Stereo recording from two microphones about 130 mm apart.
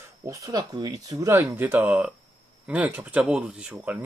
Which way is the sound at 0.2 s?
25° right (ahead or behind).